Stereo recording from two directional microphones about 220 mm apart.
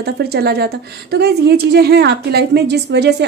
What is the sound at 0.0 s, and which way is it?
Speech, 45° right (ahead or behind).